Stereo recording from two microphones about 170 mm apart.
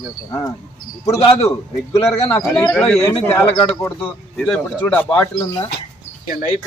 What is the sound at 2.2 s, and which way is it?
Speech, 15° left (ahead or behind).